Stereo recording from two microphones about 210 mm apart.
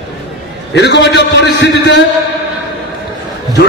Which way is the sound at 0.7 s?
55° left (ahead or behind).